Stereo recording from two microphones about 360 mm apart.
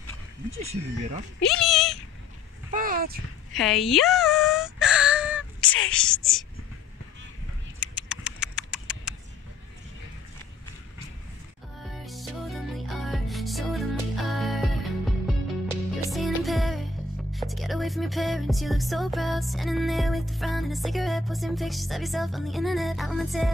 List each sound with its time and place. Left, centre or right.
0.6 s speech: centre
1.5 s cat: centre
2.7 s a sound: right
3.5 s wail: centre
7.8 s typing: centre
11.9 s music: centre